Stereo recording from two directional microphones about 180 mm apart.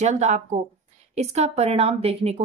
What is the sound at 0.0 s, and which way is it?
A woman's voice, 40° right (ahead or behind).